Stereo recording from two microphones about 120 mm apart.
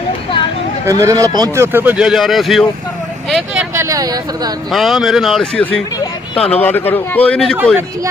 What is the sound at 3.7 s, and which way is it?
Speech, 25° right (ahead or behind).